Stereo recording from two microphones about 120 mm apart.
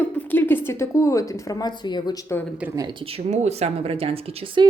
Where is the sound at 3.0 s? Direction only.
60° right (ahead or behind).